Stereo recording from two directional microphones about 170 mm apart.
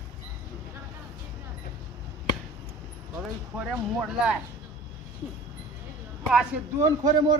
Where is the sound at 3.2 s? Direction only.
10° right (ahead or behind).